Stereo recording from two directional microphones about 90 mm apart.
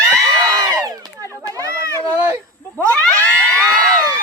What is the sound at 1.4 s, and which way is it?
Children playing, 40° right (ahead or behind).